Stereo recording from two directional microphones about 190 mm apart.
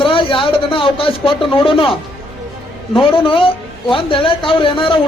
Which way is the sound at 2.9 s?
25° left (ahead or behind).